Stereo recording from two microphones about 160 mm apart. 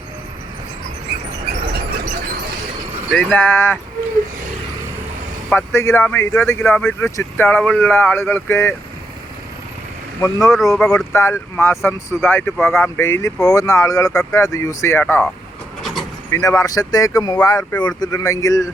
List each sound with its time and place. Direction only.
3.1 s speech: 10° left (ahead or behind)
5.5 s speech: 15° left (ahead or behind)
6.7 s speech: centre (ahead or behind)
7.0 s speech: 15° left (ahead or behind)
10.2 s speech: 20° left (ahead or behind)
10.8 s speech: 5° left (ahead or behind)
11.1 s speech: 15° left (ahead or behind)
15.0 s speech: 5° left (ahead or behind)
15.8 s vehicle: centre (ahead or behind)
16.3 s speech: 20° left (ahead or behind)